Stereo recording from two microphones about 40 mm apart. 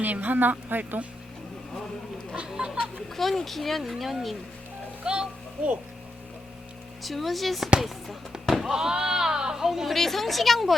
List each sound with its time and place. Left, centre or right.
0.0 s speech: right
2.6 s a child's voice: right
3.2 s speech: centre
5.0 s a child's voice: right
7.0 s speech: centre
8.4 s a sound: centre
8.7 s sheep: centre
9.9 s speech: centre